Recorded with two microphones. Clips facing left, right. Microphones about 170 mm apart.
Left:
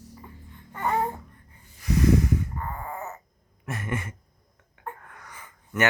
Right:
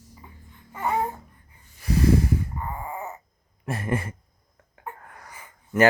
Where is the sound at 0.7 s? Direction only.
5° right (ahead or behind).